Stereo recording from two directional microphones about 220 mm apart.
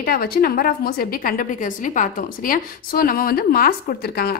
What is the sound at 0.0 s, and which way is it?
A woman's voice, 45° left (ahead or behind).